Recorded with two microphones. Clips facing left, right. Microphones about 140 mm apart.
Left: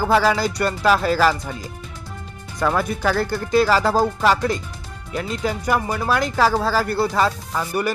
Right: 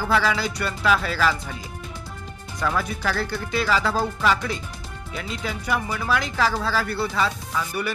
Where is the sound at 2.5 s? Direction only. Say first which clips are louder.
Left 5 dB; 50° left (ahead or behind).